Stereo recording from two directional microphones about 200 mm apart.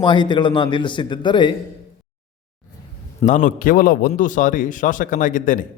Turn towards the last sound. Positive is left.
turn(degrees=40)  # may be behind; listen again after turning